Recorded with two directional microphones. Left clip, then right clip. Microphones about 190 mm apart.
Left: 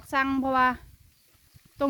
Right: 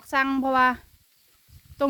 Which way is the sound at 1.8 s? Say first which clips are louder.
Right 2 dB; 5° right (ahead or behind).